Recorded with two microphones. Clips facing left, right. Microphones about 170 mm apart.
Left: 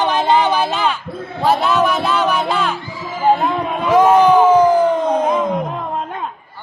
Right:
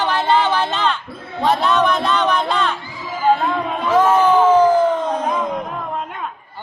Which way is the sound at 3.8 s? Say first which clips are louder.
Left 4 dB; 15° left (ahead or behind).